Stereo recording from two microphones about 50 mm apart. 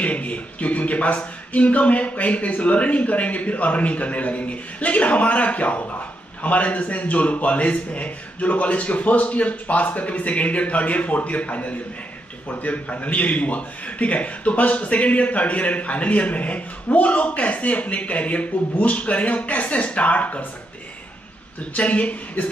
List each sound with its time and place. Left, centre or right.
0.0 s a man's voice: left
21.7 s a man's voice: left